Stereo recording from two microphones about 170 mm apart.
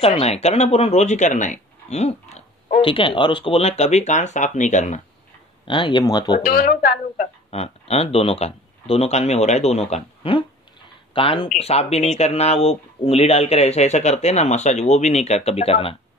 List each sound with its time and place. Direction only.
0.0 s speech: 35° left (ahead or behind)
5.7 s speech: 30° left (ahead or behind)
6.4 s speech: 60° left (ahead or behind)
7.5 s speech: 40° left (ahead or behind)